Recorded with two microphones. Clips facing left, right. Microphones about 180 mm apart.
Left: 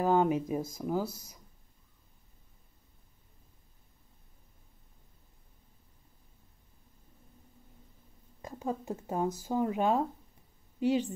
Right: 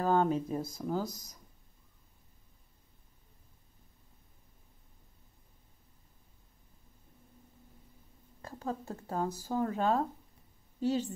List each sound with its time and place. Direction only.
0.0 s speech: 15° left (ahead or behind)
8.4 s a woman's voice: 15° left (ahead or behind)